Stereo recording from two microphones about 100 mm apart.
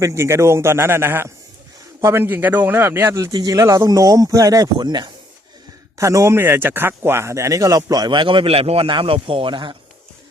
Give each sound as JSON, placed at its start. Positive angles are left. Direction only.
{"t": 0.0, "sound": "a man's voice", "side_deg": -30}
{"t": 3.3, "sound": "speech", "side_deg": -40}
{"t": 6.0, "sound": "speech", "side_deg": -30}